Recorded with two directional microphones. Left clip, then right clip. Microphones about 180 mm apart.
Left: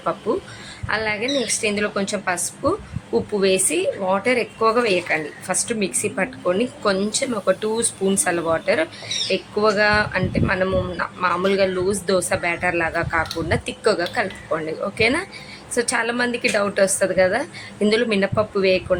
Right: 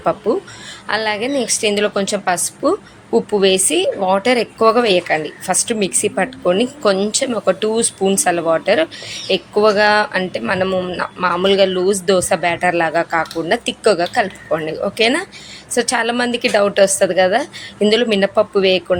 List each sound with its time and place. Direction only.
0.9 s a woman's voice: 25° right (ahead or behind)